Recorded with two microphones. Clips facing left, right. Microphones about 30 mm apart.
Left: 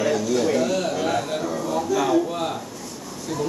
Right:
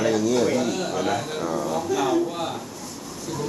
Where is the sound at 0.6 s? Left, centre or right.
Centre.